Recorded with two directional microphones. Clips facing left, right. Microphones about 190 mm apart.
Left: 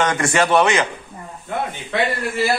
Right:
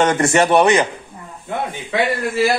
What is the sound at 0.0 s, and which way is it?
Speech, 30° right (ahead or behind).